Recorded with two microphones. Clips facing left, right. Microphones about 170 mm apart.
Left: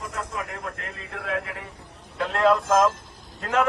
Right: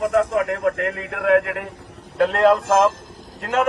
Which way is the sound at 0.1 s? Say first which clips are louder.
Right 14 dB; 65° right (ahead or behind).